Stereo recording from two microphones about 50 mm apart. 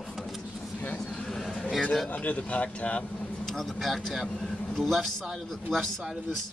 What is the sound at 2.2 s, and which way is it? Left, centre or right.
Speech, left.